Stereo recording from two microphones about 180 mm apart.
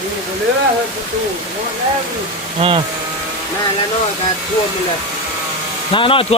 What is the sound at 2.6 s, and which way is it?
Speech, 30° right (ahead or behind).